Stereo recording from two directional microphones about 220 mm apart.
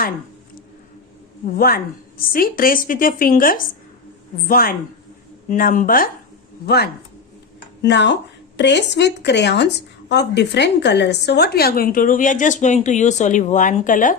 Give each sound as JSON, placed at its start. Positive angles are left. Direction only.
{"t": 1.5, "sound": "speech", "side_deg": 40}